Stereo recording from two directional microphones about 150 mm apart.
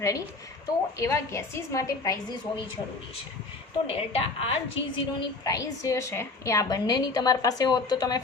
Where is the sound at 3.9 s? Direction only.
40° left (ahead or behind).